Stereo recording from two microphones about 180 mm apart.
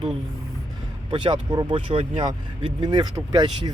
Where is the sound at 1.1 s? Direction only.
25° right (ahead or behind).